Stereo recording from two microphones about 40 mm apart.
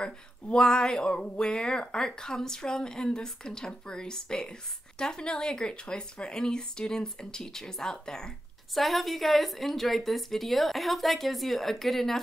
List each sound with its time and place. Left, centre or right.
0.0 s speech: left
8.7 s a woman's voice: centre